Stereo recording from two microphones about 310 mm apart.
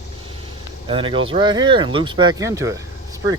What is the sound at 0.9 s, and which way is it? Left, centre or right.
Speech, centre.